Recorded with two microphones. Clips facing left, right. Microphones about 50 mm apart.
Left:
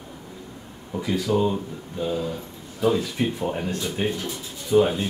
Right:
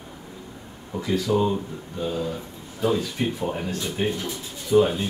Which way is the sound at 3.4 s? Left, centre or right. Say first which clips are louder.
Left 1 dB; centre.